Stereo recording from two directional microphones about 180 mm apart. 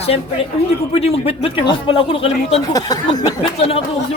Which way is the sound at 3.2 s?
35° left (ahead or behind).